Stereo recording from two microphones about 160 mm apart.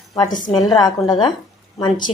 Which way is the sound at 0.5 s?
25° left (ahead or behind).